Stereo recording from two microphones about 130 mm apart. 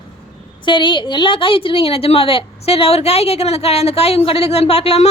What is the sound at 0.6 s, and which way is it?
A woman's voice, 35° left (ahead or behind).